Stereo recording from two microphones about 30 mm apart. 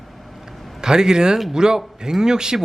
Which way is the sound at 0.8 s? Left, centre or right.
Right.